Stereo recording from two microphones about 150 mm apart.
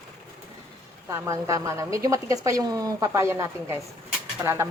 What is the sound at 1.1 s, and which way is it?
A woman's voice, 20° right (ahead or behind).